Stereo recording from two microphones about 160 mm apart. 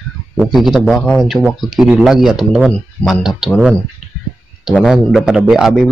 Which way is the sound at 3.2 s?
Centre (ahead or behind).